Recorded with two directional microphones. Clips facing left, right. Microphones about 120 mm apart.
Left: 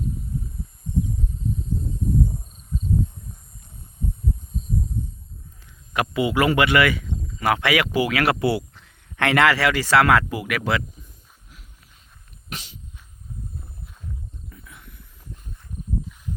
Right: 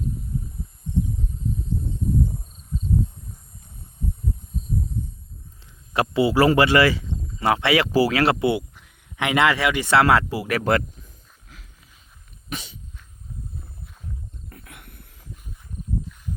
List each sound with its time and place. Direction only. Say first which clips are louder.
5.9 s speech: right 3 dB; 30° right (ahead or behind)
8.7 s speech: left 1 dB; 10° right (ahead or behind); by 10.6 s 30° right (ahead or behind)
10.6 s speech: right 5 dB; 45° right (ahead or behind)
14.5 s a sound: right 1 dB; 65° right (ahead or behind)